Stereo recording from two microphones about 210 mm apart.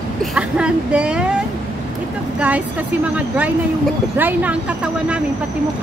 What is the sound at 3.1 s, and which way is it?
Speech, 5° right (ahead or behind).